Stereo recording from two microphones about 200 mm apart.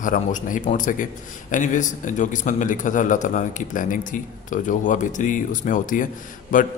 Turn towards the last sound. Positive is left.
turn(degrees=40)  # may be behind; listen again after turning